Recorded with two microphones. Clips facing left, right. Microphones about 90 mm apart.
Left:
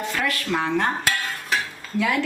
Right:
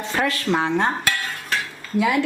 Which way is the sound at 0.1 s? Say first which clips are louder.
Right 6 dB; 30° right (ahead or behind).